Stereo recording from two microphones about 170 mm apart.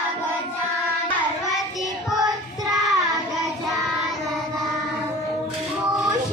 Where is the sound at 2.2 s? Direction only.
20° right (ahead or behind).